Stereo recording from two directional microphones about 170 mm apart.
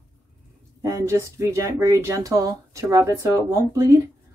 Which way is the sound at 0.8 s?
20° right (ahead or behind).